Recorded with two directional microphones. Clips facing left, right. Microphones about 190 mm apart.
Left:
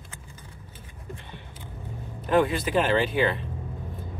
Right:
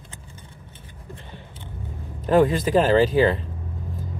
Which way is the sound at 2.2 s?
40° right (ahead or behind).